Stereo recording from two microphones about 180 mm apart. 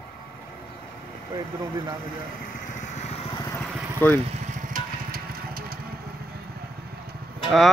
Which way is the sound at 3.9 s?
10° left (ahead or behind).